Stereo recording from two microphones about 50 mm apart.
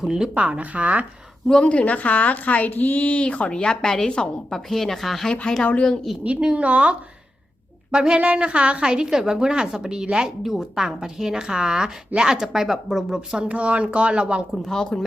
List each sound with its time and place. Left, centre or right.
0.0 s a woman's voice: centre
0.3 s a woman's voice: right
1.6 s speech: left; by 5.3 s centre
5.3 s speech: centre
6.1 s a woman's voice: centre
6.4 s a woman's voice: right
7.9 s a woman's voice: centre
14.6 s a woman's voice: centre